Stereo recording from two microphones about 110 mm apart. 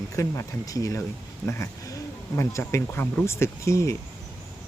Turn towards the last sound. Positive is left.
turn(degrees=25)  # may be behind; listen again after turning